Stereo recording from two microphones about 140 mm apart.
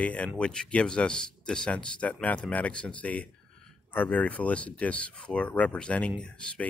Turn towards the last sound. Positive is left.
turn(degrees=5)  # may be behind; listen again after turning